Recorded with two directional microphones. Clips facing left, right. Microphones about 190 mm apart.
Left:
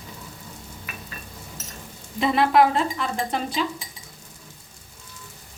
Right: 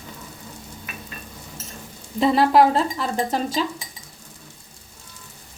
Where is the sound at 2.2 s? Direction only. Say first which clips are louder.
Right 3 dB; 35° right (ahead or behind).